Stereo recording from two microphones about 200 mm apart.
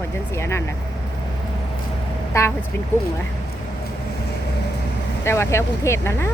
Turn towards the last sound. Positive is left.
turn(degrees=15)  # may be behind; listen again after turning